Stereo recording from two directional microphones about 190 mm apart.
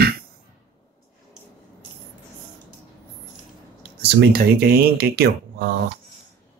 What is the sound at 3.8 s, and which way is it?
Speech, 55° right (ahead or behind).